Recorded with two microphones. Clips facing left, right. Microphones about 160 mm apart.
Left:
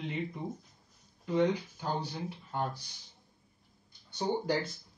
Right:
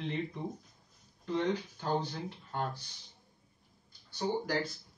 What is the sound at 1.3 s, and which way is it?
Speech, 10° left (ahead or behind).